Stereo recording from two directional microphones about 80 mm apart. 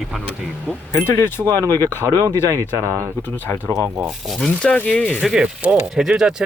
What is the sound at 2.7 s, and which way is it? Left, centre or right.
Speech, right.